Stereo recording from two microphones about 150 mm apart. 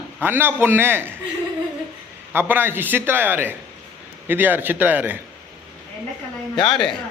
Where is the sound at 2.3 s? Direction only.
15° right (ahead or behind).